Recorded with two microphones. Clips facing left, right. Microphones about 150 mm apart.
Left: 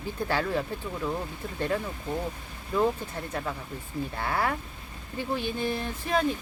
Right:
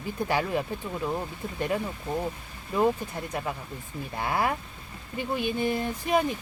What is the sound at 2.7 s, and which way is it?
Speech, 15° right (ahead or behind).